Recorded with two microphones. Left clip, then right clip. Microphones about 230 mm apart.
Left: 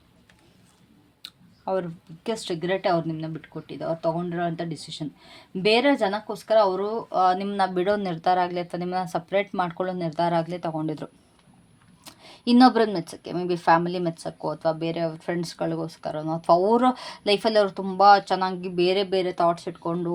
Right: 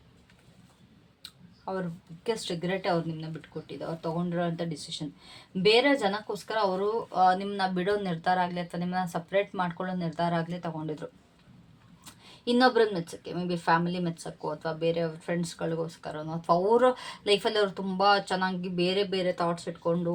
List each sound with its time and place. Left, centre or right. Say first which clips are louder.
1.2 s clicking: left 6 dB; left
2.2 s speech: left 3 dB; left
12.0 s a sound: left 4 dB; left
13.1 s speech: left 6 dB; left